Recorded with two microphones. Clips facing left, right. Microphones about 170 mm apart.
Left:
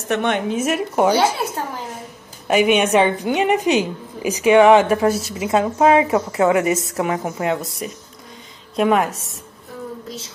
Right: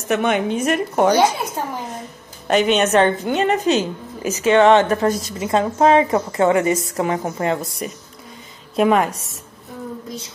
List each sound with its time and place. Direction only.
0.1 s a woman's voice: 5° right (ahead or behind)
2.4 s a woman's voice: 10° left (ahead or behind)